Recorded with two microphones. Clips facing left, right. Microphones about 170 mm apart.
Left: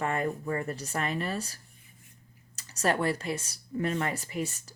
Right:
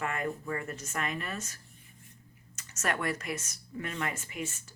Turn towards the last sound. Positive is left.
turn(degrees=35)  # may be behind; listen again after turning